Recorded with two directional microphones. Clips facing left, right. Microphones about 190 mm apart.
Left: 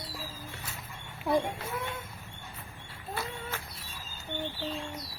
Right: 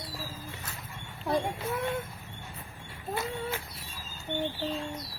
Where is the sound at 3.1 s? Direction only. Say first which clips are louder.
Right 4 dB; 15° right (ahead or behind).